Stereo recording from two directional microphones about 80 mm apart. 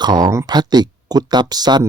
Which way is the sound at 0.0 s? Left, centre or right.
Right.